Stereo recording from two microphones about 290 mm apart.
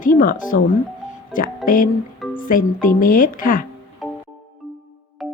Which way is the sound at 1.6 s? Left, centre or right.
Left.